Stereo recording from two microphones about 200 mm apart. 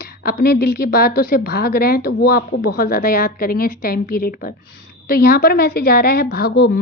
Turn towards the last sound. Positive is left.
turn(degrees=55)  # may be behind; listen again after turning